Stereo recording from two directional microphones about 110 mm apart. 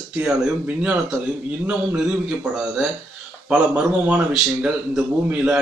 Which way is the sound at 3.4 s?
10° right (ahead or behind).